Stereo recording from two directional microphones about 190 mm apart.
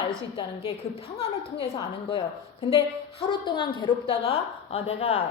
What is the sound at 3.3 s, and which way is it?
Speech, 25° left (ahead or behind).